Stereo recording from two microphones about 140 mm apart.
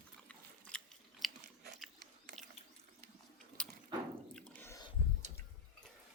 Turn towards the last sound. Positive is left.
turn(degrees=5)  # may be behind; listen again after turning